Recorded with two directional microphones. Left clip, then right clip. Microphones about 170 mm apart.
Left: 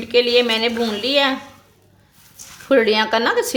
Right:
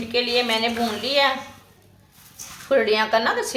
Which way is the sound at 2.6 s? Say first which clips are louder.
Left 4 dB; 75° left (ahead or behind).